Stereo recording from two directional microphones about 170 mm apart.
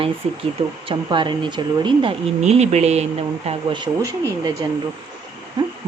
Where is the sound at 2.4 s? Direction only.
40° right (ahead or behind).